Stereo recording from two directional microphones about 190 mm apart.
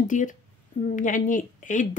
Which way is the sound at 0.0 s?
40° left (ahead or behind).